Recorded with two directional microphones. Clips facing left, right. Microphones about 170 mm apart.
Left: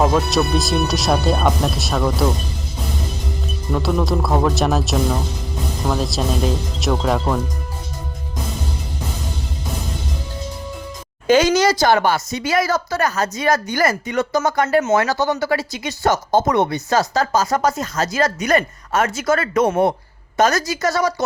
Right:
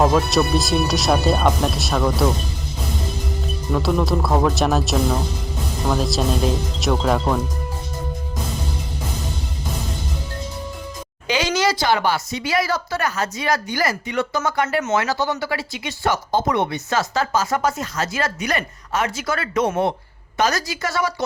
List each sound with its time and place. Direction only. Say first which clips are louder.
0.0 s speech: even; centre (ahead or behind)
3.7 s speech: even; centre (ahead or behind)
11.3 s speech: left 6 dB; 45° left (ahead or behind)